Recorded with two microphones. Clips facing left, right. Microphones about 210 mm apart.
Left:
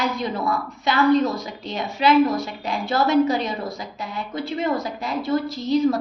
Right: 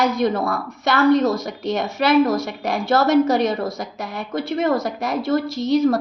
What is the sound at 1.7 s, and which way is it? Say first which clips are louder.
Speech: right 1 dB; 45° right (ahead or behind).